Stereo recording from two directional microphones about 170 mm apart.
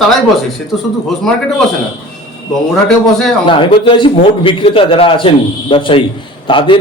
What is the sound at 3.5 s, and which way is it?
A man's voice, 30° left (ahead or behind).